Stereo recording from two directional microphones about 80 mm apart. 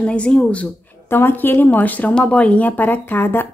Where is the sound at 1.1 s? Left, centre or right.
Left.